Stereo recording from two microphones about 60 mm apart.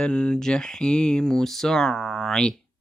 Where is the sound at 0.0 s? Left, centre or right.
Centre.